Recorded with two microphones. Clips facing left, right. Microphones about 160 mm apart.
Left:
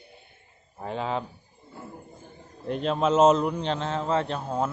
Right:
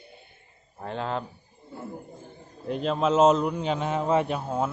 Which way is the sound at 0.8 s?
Centre (ahead or behind).